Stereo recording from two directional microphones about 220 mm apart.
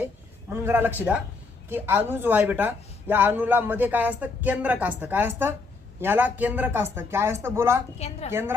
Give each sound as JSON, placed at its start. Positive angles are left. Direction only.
{"t": 0.5, "sound": "speech", "side_deg": -10}
{"t": 7.9, "sound": "a woman's voice", "side_deg": 30}
{"t": 8.3, "sound": "speech", "side_deg": -10}